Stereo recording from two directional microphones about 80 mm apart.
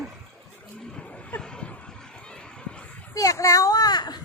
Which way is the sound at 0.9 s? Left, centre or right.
Centre.